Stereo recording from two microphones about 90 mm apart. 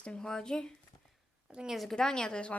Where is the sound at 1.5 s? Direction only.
5° right (ahead or behind); by 2.6 s 10° left (ahead or behind).